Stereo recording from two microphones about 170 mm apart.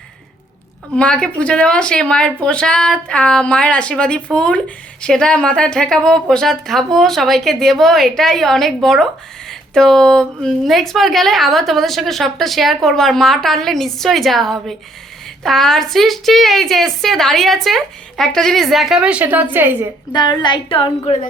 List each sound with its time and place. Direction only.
0.9 s a woman's voice: 5° left (ahead or behind); by 19.9 s 15° right (ahead or behind)
20.1 s a woman's voice: 25° left (ahead or behind)